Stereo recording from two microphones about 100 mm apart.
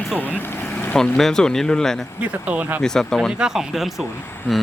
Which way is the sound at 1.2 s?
5° left (ahead or behind).